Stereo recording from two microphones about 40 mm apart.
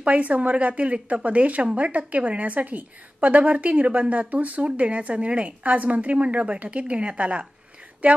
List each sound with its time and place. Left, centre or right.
0.0 s a woman's voice: right